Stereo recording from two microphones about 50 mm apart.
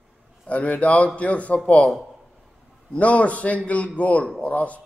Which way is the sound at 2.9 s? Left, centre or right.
Left.